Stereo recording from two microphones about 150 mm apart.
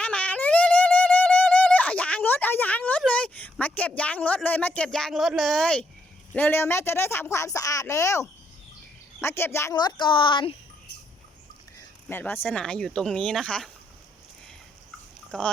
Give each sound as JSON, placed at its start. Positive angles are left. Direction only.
{"t": 0.0, "sound": "a sound", "side_deg": 10}
{"t": 3.0, "sound": "speech", "side_deg": 5}
{"t": 9.7, "sound": "speech", "side_deg": 30}
{"t": 12.0, "sound": "speech", "side_deg": 15}
{"t": 15.3, "sound": "speech", "side_deg": 5}